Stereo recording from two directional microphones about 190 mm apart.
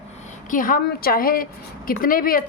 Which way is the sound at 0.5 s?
45° left (ahead or behind).